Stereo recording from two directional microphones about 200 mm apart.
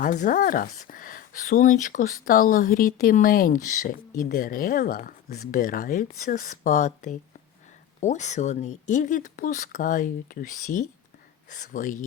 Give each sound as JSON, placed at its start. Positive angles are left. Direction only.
{"t": 0.0, "sound": "speech", "side_deg": 40}